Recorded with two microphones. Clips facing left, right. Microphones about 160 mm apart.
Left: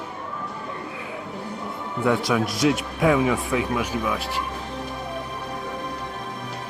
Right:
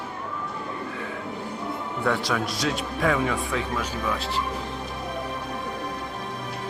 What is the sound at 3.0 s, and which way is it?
Speech, 5° left (ahead or behind).